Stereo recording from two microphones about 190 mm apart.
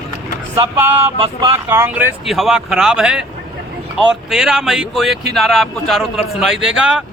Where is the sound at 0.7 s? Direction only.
10° right (ahead or behind).